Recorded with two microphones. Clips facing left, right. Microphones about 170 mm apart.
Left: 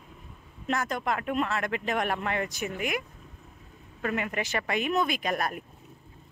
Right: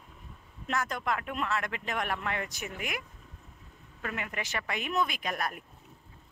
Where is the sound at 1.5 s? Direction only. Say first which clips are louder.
Left 4 dB; 55° left (ahead or behind).